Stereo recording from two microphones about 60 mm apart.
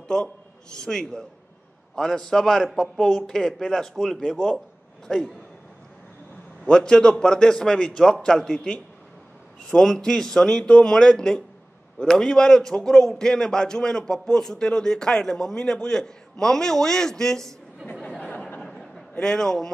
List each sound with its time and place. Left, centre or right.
0.1 s a man's voice: centre
6.6 s a man's voice: centre
17.8 s speech: centre
18.6 s a sound: centre
19.1 s a man's voice: centre